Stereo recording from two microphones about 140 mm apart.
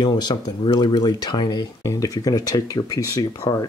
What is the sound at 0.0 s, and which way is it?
Speech, 30° left (ahead or behind).